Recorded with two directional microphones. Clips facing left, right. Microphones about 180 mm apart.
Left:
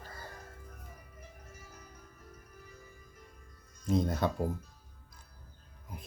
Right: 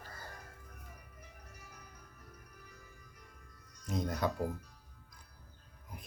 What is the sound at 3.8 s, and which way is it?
Speech, 30° left (ahead or behind).